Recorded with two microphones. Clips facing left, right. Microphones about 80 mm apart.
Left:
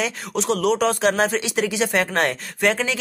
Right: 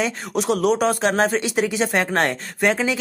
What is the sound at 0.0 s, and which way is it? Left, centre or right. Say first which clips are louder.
Speech: right 2 dB; centre.